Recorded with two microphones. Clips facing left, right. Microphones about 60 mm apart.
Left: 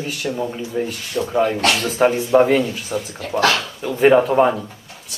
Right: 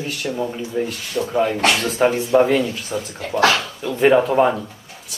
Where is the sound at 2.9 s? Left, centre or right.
Left.